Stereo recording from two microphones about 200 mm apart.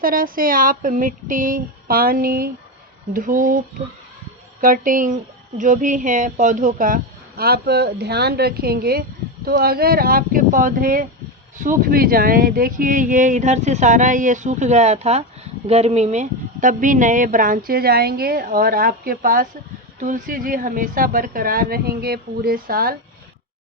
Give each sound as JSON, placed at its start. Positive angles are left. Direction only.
{"t": 0.0, "sound": "speech", "side_deg": -45}
{"t": 4.6, "sound": "speech", "side_deg": -45}